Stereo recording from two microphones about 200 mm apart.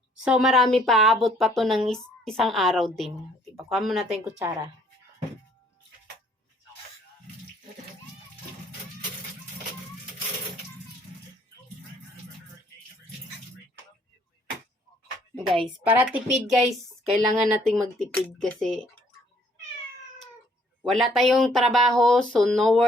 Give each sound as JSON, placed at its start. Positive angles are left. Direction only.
{"t": 0.3, "sound": "speech", "side_deg": 0}
{"t": 4.4, "sound": "speech", "side_deg": -15}
{"t": 15.4, "sound": "a woman's voice", "side_deg": -25}
{"t": 15.8, "sound": "speech", "side_deg": -5}
{"t": 20.8, "sound": "speech", "side_deg": 0}